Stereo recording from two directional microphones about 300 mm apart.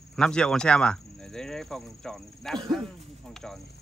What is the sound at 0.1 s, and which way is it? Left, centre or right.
Speech, centre.